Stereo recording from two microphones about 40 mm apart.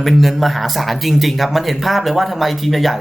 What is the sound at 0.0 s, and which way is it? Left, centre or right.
Speech, centre.